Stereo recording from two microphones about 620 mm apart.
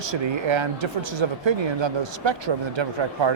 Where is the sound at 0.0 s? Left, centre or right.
Right.